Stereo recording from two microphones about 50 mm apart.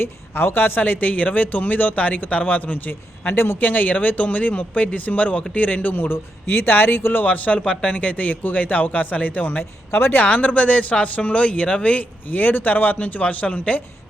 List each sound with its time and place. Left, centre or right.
0.0 s speech: left
3.6 s speech: left
5.9 s speech: left
7.7 s speech: centre
7.9 s speech: left
10.2 s speech: left